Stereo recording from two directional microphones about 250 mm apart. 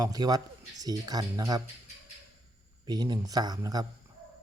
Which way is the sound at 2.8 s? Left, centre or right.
Centre.